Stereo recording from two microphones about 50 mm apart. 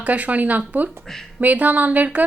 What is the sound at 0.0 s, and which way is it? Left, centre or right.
A woman's voice, right.